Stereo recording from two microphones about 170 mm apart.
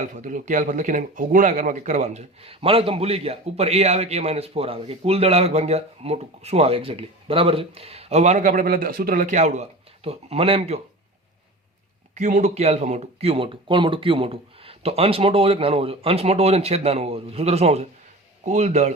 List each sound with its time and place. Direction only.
0.0 s speech: 50° right (ahead or behind)
12.1 s speech: 45° right (ahead or behind)